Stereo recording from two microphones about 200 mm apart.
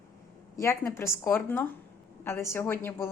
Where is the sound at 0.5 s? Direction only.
15° left (ahead or behind).